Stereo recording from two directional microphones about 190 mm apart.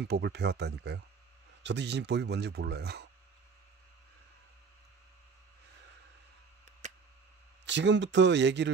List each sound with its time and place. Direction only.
0.0 s speech: 60° right (ahead or behind)
7.6 s speech: 70° right (ahead or behind)